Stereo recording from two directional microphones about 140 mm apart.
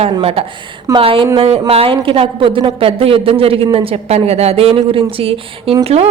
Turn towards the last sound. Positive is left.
turn(degrees=-50)  # may be behind; listen again after turning